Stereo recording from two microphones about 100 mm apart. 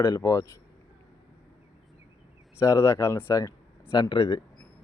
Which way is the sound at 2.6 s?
25° left (ahead or behind).